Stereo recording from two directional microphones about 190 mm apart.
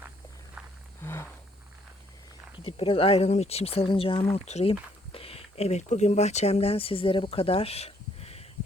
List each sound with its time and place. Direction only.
0.6 s a sound: 5° right (ahead or behind)
1.0 s wild animals: 10° left (ahead or behind)
2.6 s speech: 30° left (ahead or behind)